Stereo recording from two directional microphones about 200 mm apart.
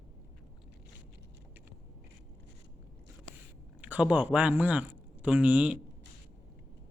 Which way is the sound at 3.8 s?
5° right (ahead or behind).